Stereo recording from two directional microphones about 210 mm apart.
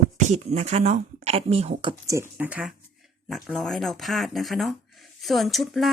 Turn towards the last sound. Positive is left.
turn(degrees=0)  # may be behind; listen again after turning